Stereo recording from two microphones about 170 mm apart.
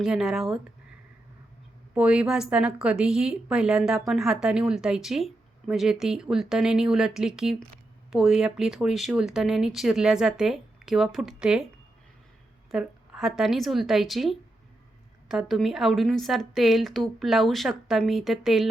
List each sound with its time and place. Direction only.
0.0 s speech: 5° right (ahead or behind)
2.0 s speech: 5° right (ahead or behind)
12.7 s speech: 5° right (ahead or behind)